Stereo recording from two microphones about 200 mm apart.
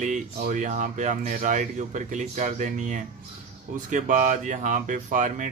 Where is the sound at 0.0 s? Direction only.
40° right (ahead or behind).